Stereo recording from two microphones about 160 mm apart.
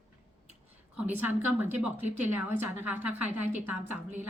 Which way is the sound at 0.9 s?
10° right (ahead or behind).